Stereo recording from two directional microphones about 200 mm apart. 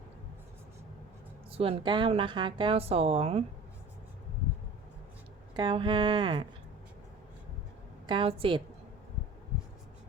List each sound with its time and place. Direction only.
1.5 s a woman's voice: 30° right (ahead or behind)
5.5 s a woman's voice: 25° right (ahead or behind)
8.0 s a woman's voice: 25° right (ahead or behind)